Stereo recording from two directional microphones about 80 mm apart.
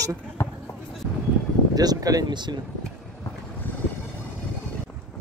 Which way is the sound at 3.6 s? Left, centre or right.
Left.